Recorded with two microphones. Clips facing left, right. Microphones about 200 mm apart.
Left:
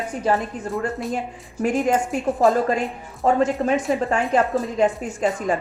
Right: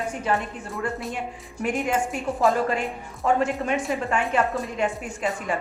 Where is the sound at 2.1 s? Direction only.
Centre (ahead or behind).